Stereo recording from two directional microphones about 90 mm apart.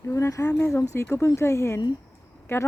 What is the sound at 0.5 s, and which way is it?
A woman's voice, 25° left (ahead or behind).